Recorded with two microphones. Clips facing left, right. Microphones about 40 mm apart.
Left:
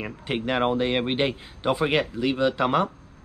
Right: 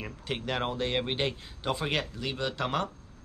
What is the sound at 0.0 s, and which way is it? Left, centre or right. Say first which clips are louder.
Speech: left 7 dB; left.